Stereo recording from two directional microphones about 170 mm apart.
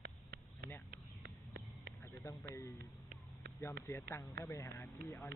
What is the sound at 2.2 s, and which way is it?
Speech, 15° left (ahead or behind).